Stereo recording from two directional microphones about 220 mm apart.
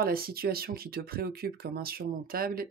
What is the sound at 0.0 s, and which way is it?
Speech, 45° right (ahead or behind).